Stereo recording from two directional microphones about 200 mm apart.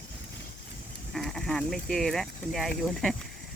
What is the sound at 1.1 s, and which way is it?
Speech, centre (ahead or behind).